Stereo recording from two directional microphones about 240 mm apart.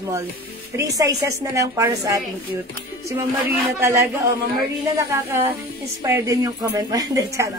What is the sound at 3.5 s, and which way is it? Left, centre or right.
Speech, centre.